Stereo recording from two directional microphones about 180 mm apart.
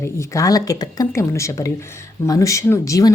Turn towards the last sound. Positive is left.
turn(degrees=15)  # may be behind; listen again after turning